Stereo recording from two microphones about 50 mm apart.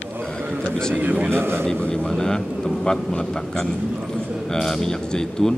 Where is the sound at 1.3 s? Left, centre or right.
Right.